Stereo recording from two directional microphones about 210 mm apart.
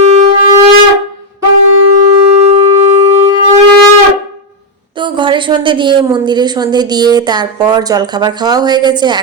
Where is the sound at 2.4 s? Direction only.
35° right (ahead or behind).